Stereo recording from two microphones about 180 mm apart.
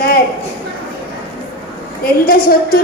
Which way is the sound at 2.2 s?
55° left (ahead or behind).